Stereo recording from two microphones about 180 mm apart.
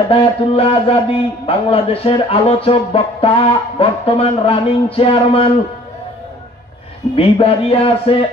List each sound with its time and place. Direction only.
0.1 s speech: 35° left (ahead or behind)
7.2 s speech: 30° left (ahead or behind)